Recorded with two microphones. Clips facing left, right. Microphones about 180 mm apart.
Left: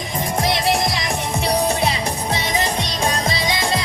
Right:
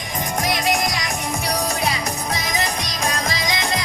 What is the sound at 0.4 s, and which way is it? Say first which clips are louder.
Music: left 2 dB; 30° left (ahead or behind).